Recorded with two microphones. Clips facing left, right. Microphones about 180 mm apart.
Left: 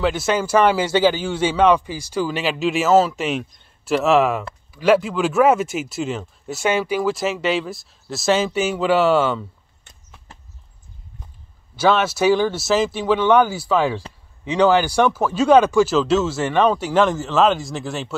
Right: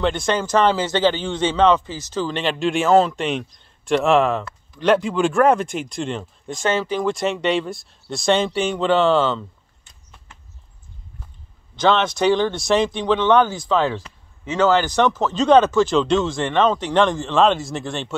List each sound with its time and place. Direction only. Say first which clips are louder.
0.0 s a man's voice: left 1 dB; 5° left (ahead or behind)
10.3 s horse: left 4 dB; 35° left (ahead or behind)
11.7 s a man's voice: left 1 dB; 10° left (ahead or behind)